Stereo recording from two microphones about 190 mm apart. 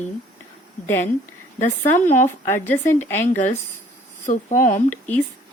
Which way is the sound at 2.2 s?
15° left (ahead or behind).